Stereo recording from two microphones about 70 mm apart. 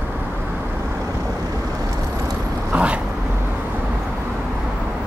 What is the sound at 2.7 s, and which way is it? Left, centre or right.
Vehicle, centre.